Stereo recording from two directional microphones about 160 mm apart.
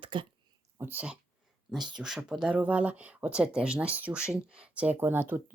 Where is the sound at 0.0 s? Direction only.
30° right (ahead or behind).